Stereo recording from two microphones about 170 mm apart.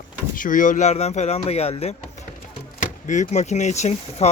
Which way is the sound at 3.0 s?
45° left (ahead or behind).